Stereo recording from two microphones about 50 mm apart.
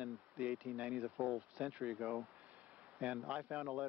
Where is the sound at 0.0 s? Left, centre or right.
Right.